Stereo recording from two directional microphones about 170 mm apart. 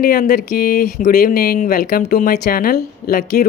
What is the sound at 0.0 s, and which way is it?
A man's voice, 60° left (ahead or behind).